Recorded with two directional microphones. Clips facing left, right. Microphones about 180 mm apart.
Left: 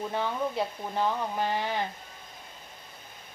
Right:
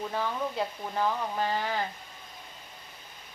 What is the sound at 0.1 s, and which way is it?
Speech, 20° left (ahead or behind).